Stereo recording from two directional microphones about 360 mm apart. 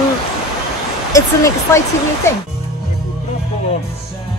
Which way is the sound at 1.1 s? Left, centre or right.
Centre.